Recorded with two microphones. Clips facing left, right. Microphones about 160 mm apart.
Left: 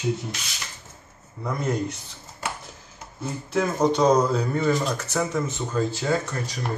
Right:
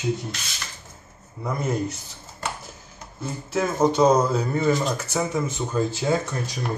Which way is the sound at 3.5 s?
5° right (ahead or behind).